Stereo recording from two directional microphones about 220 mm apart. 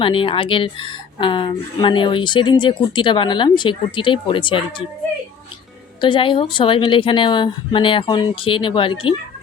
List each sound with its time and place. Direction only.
0.0 s a woman's voice: 25° left (ahead or behind)
6.0 s a woman's voice: 20° left (ahead or behind)